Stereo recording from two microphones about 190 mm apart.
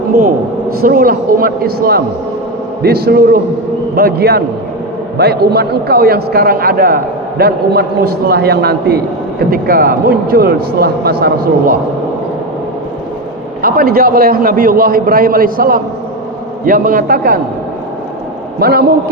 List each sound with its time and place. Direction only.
0.8 s a man's voice: 50° right (ahead or behind)
13.6 s speech: 50° right (ahead or behind)
18.6 s a man's voice: 55° right (ahead or behind)